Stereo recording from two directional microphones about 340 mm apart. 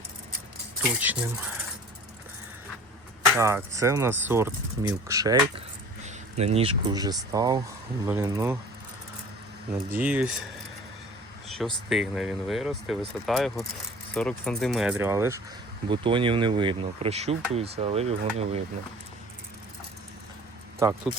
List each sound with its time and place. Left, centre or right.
1.0 s speech: centre
3.3 s speech: centre
9.9 s speech: centre
11.5 s speech: centre
20.8 s speech: centre